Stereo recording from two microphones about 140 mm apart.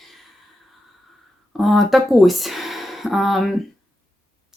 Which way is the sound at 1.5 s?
Centre (ahead or behind).